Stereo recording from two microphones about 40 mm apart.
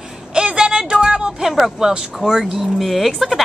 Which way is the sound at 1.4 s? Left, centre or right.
Centre.